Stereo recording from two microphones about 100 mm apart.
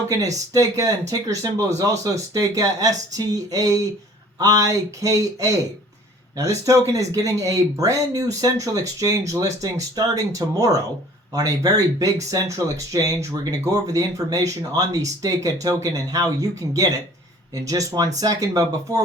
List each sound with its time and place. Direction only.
0.1 s speech: 35° right (ahead or behind)